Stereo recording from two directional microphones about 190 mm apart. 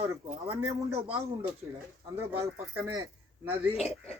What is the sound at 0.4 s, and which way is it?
A man's voice, 30° right (ahead or behind).